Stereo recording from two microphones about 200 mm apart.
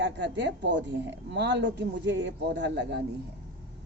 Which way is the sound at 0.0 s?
60° right (ahead or behind).